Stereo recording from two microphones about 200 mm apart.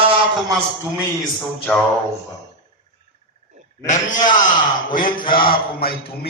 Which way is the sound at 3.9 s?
40° left (ahead or behind).